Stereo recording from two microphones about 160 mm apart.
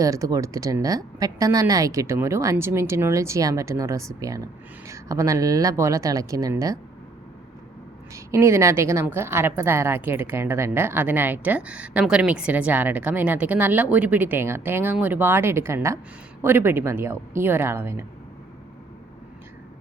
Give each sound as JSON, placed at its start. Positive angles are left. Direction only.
{"t": 0.0, "sound": "speech", "side_deg": -20}
{"t": 8.1, "sound": "a woman's voice", "side_deg": -15}